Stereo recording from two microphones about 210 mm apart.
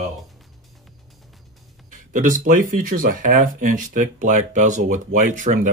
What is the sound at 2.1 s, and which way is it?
Speech, 40° right (ahead or behind).